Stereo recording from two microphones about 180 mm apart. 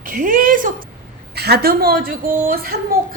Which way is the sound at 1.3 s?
60° right (ahead or behind).